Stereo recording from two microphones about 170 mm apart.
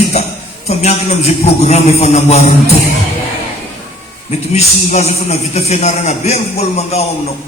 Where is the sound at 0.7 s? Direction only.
40° left (ahead or behind).